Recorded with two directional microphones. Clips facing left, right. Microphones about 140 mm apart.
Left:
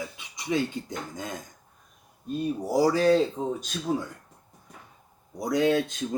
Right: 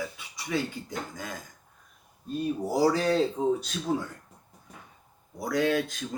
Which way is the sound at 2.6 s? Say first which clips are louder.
Left 3 dB; 10° left (ahead or behind).